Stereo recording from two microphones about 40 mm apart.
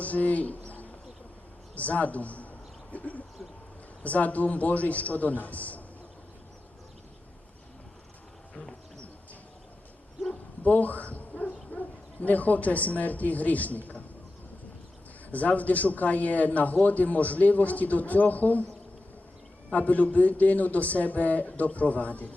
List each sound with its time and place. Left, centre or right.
0.0 s a sound: left
1.7 s a man's voice: left
10.6 s dog: left
12.2 s speech: left
15.3 s a man's voice: left
19.7 s a man's voice: left